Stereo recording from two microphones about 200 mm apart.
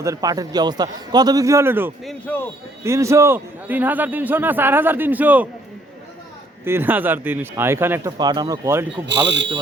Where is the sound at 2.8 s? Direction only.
15° right (ahead or behind).